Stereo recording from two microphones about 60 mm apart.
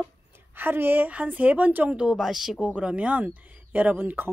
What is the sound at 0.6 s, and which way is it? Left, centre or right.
A woman's voice, right.